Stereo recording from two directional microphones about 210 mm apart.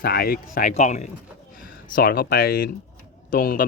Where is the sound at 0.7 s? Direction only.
35° left (ahead or behind).